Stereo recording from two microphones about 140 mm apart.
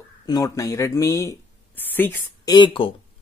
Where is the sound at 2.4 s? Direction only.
30° left (ahead or behind).